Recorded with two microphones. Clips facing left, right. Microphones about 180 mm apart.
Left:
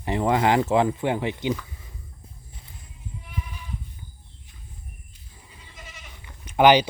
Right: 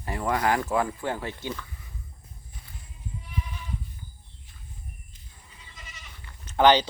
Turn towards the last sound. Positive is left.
turn(degrees=10)  # may be behind; listen again after turning